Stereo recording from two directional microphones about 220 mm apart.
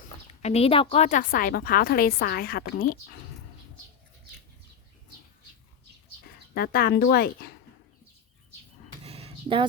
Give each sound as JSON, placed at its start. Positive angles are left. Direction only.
{"t": 0.4, "sound": "a woman's voice", "side_deg": 25}
{"t": 6.2, "sound": "speech", "side_deg": 45}
{"t": 9.0, "sound": "a sound", "side_deg": -25}